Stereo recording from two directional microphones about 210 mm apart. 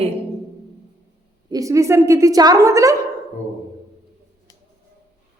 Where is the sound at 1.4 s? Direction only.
15° right (ahead or behind).